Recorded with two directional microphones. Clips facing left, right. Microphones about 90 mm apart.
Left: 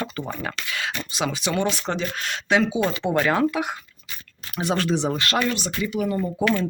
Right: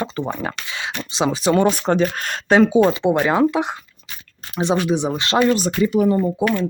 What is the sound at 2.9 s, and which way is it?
Speech, 20° right (ahead or behind).